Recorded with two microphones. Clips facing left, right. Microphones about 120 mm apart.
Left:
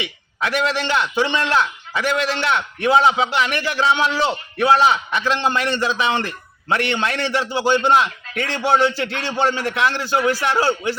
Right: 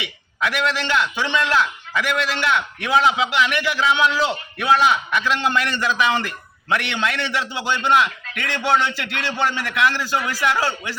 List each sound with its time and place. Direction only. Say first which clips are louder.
0.0 s a man's voice: even; 30° left (ahead or behind)